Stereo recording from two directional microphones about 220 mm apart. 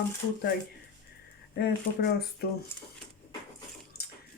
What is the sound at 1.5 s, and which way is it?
Speech, 45° left (ahead or behind).